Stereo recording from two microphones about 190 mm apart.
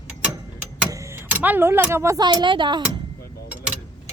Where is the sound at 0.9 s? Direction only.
15° right (ahead or behind).